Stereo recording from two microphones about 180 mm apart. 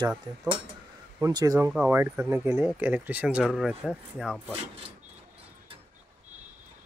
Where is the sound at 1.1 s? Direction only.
20° right (ahead or behind).